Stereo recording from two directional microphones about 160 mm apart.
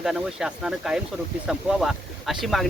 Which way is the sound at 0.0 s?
5° right (ahead or behind).